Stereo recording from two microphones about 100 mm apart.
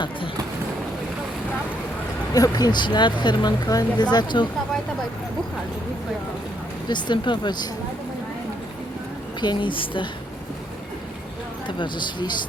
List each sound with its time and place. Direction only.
2.3 s a woman's voice: 40° left (ahead or behind)
6.8 s a woman's voice: 50° left (ahead or behind)
9.4 s a woman's voice: 50° left (ahead or behind)
11.8 s a woman's voice: 50° left (ahead or behind)